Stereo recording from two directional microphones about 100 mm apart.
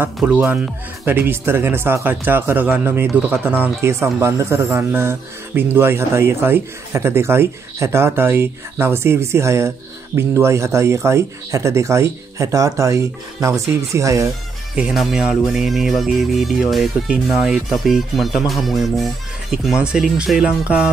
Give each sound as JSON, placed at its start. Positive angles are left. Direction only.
{"t": 0.0, "sound": "speech", "side_deg": -15}
{"t": 14.8, "sound": "speech", "side_deg": -5}